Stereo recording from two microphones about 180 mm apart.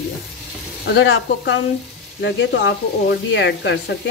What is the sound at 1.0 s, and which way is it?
Speech, 80° left.